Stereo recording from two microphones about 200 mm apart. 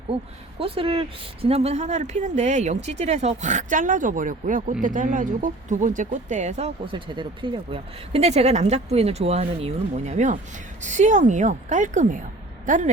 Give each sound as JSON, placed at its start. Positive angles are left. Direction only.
{"t": 0.6, "sound": "a woman's voice", "side_deg": -25}